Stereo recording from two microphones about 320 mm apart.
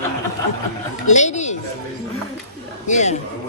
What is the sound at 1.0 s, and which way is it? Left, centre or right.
Speech, left.